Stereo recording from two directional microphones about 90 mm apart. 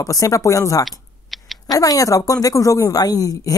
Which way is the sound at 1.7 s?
40° left (ahead or behind).